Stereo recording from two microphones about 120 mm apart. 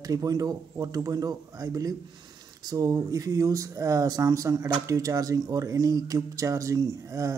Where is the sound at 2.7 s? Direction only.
30° right (ahead or behind).